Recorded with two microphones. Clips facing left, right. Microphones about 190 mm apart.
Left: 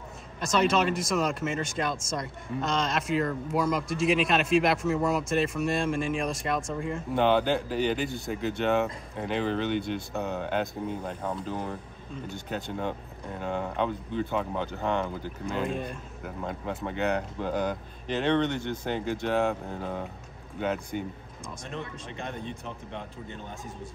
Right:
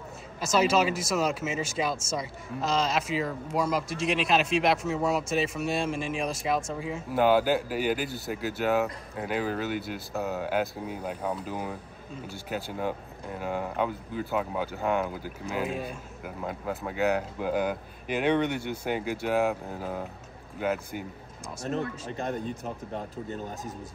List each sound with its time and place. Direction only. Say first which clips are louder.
0.4 s speech: right 1 dB; 5° right (ahead or behind)
22.1 s speech: right 3 dB; 40° right (ahead or behind)